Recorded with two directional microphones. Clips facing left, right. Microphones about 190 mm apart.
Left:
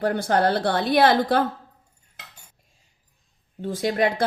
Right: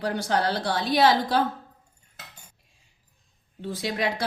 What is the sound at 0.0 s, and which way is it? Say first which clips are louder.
Speech: left 5 dB; 50° left (ahead or behind).